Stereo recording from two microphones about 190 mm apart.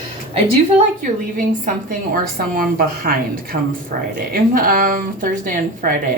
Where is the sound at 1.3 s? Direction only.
45° right (ahead or behind).